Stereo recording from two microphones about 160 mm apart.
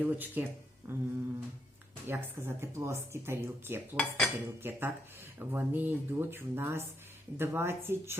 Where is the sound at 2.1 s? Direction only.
15° right (ahead or behind).